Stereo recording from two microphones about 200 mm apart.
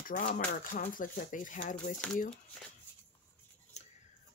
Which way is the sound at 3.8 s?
35° left (ahead or behind).